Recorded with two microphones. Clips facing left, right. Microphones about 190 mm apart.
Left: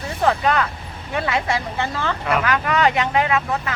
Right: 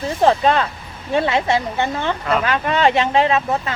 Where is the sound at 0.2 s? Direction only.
25° right (ahead or behind).